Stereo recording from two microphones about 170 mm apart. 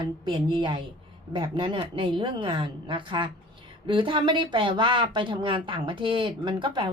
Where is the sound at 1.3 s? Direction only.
30° right (ahead or behind).